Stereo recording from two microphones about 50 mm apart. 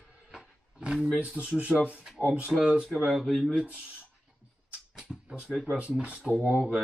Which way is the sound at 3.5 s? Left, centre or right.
Centre.